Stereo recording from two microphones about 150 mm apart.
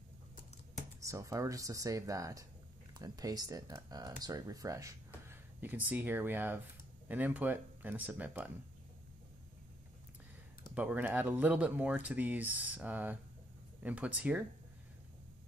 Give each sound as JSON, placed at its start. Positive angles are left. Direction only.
{"t": 1.0, "sound": "speech", "side_deg": -20}
{"t": 10.7, "sound": "speech", "side_deg": -10}